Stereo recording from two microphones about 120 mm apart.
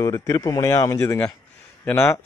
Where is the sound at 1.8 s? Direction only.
15° left (ahead or behind).